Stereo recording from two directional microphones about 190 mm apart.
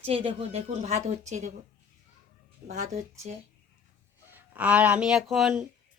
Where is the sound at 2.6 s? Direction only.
40° right (ahead or behind).